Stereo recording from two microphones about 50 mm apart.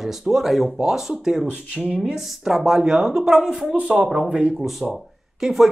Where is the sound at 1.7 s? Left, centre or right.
Right.